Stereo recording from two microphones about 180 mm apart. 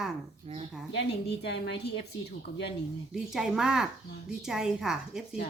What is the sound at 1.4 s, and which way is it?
Speech, 65° left (ahead or behind).